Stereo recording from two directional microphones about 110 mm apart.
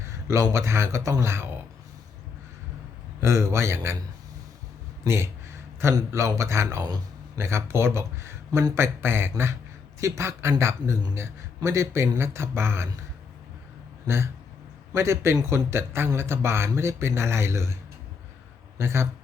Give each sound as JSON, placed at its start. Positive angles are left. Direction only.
{"t": 0.1, "sound": "a sound", "side_deg": -25}
{"t": 0.5, "sound": "speech", "side_deg": -25}
{"t": 3.2, "sound": "speech", "side_deg": -25}
{"t": 5.0, "sound": "speech", "side_deg": -25}
{"t": 14.9, "sound": "speech", "side_deg": -25}
{"t": 18.8, "sound": "speech", "side_deg": -25}